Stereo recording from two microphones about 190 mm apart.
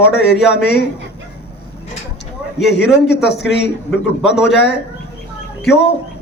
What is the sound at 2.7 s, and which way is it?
A man's voice, 65° left (ahead or behind).